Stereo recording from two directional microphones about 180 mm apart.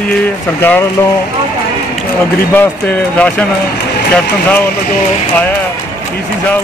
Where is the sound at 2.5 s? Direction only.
10° left (ahead or behind).